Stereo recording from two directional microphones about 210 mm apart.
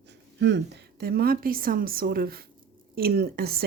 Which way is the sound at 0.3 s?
55° right (ahead or behind).